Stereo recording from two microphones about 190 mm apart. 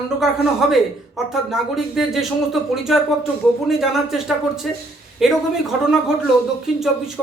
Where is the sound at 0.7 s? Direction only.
Centre (ahead or behind).